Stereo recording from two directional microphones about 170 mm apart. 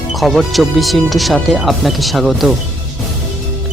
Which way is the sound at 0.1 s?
Centre (ahead or behind).